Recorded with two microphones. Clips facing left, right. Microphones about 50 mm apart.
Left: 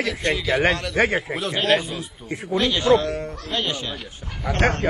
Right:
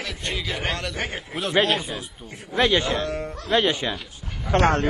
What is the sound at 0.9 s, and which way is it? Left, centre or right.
Speech, left.